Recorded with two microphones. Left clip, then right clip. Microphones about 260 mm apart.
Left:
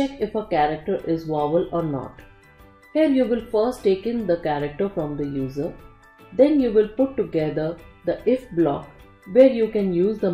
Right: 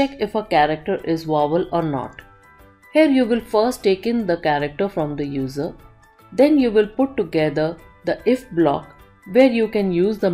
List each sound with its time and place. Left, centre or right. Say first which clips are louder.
0.0 s speech: right 4 dB; centre
1.2 s speech: right 5 dB; centre
1.5 s speech: right 2 dB; centre
2.9 s speech: right 4 dB; centre
6.6 s speech: right 2 dB; centre